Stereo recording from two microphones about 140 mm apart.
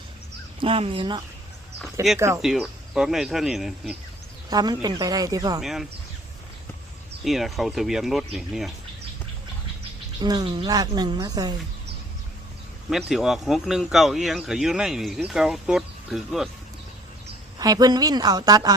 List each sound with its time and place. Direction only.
0.6 s speech: 40° right (ahead or behind)
2.1 s speech: 20° right (ahead or behind)
2.4 s speech: centre (ahead or behind)
4.4 s speech: 30° right (ahead or behind)
5.5 s speech: centre (ahead or behind)
7.3 s speech: centre (ahead or behind)
10.2 s speech: 30° right (ahead or behind)
12.9 s speech: 5° right (ahead or behind)
17.6 s speech: 30° right (ahead or behind)